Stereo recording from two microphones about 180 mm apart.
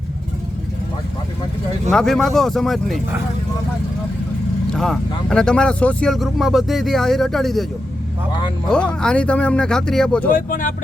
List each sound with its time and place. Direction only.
1.9 s speech: 5° left (ahead or behind)
4.7 s speech: 5° left (ahead or behind)
8.7 s speech: 5° left (ahead or behind)
10.2 s speech: 50° left (ahead or behind)